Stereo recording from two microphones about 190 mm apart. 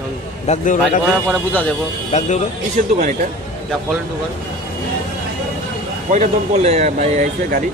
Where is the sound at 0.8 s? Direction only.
Centre (ahead or behind).